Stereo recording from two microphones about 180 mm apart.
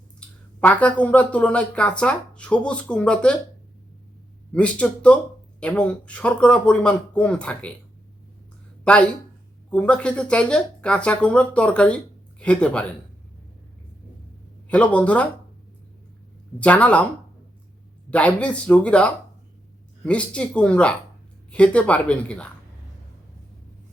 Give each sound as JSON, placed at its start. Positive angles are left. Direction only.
{"t": 0.6, "sound": "speech", "side_deg": 10}
{"t": 4.5, "sound": "speech", "side_deg": 5}
{"t": 8.8, "sound": "speech", "side_deg": 5}
{"t": 14.7, "sound": "speech", "side_deg": 5}
{"t": 16.6, "sound": "speech", "side_deg": 5}
{"t": 18.1, "sound": "speech", "side_deg": 5}